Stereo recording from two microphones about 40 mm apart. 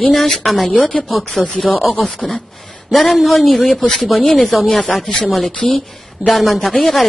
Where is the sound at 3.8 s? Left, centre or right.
Centre.